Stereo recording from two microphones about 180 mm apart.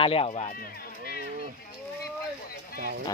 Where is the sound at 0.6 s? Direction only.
60° left (ahead or behind).